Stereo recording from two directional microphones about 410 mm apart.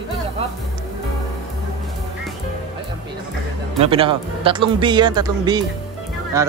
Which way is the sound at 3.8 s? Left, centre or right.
Centre.